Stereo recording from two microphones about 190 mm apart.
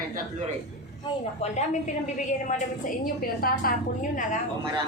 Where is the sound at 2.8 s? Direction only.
50° left (ahead or behind).